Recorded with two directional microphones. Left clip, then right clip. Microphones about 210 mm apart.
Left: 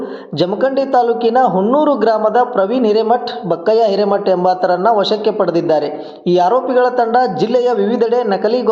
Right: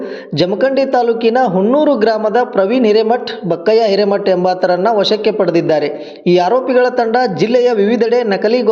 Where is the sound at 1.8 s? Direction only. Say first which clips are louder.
Even; 60° right (ahead or behind).